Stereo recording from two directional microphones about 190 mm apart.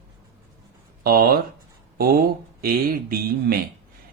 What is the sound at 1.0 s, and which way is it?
A man's voice, 50° right (ahead or behind).